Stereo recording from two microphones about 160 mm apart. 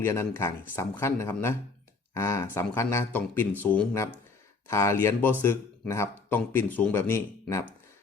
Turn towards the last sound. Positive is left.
turn(degrees=15)  # may be behind; listen again after turning